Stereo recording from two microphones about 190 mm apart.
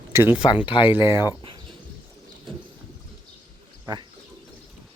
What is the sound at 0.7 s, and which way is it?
Speech, 25° left (ahead or behind).